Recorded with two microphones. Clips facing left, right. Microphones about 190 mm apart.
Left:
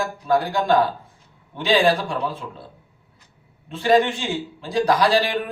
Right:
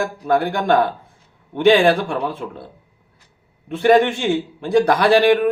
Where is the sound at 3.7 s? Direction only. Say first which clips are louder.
Right 4 dB; 60° right (ahead or behind).